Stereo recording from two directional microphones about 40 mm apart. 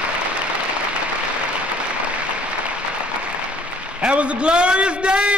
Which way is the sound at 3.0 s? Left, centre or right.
Right.